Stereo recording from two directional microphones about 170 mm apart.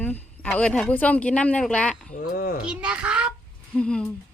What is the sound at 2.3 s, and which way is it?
Speech, 60° left (ahead or behind).